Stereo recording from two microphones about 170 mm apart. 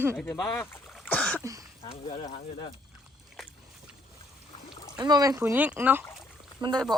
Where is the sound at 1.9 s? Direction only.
35° left (ahead or behind).